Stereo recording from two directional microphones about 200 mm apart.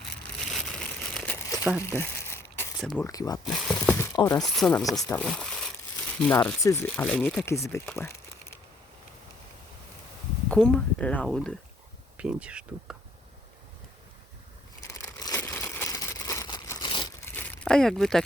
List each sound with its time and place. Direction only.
0.2 s crumpling: centre (ahead or behind)
2.8 s speech: centre (ahead or behind)
3.1 s speech: 20° left (ahead or behind)
3.4 s speech: centre (ahead or behind)
3.9 s a sound: 15° left (ahead or behind)
4.4 s speech: 5° left (ahead or behind)
7.9 s a sound: 15° left (ahead or behind)
10.5 s speech: 5° left (ahead or behind)
14.9 s crumpling: 15° left (ahead or behind)
17.2 s a sound: 10° left (ahead or behind)